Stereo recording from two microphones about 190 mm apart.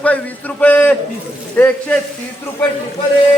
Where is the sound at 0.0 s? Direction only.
5° left (ahead or behind).